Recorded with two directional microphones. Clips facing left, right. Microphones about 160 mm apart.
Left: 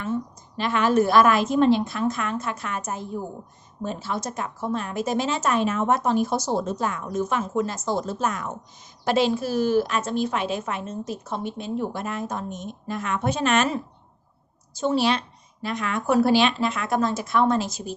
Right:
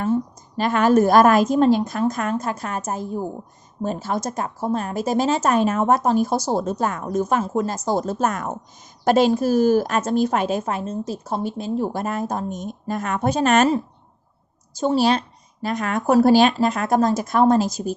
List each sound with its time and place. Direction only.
0.0 s a woman's voice: 40° right (ahead or behind)
14.8 s a woman's voice: 40° right (ahead or behind)